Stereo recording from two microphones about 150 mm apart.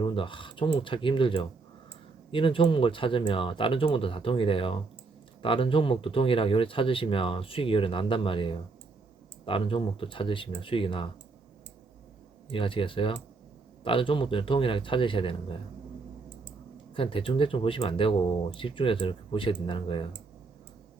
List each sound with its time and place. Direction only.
0.0 s speech: 35° left (ahead or behind)
12.5 s speech: 35° left (ahead or behind)
16.9 s speech: 35° left (ahead or behind)